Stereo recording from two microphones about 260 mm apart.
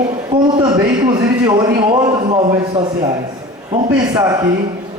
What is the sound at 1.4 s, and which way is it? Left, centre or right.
Speech, centre.